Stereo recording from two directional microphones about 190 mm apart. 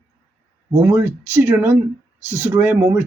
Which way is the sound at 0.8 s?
15° right (ahead or behind).